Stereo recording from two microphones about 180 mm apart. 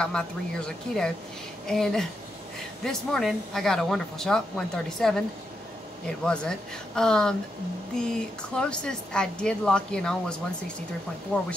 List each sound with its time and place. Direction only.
0.0 s speech: 5° left (ahead or behind)
6.2 s speech: 5° left (ahead or behind)